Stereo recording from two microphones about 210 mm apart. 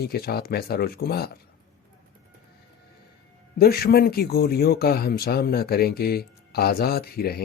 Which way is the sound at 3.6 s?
45° left (ahead or behind).